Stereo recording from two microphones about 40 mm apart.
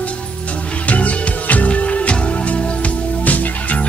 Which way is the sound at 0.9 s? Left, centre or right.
Left.